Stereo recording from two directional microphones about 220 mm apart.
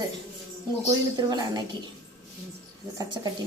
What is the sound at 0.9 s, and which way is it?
Speech, 15° right (ahead or behind).